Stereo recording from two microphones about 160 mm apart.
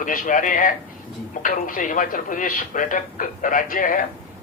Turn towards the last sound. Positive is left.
turn(degrees=60)  # may be behind; listen again after turning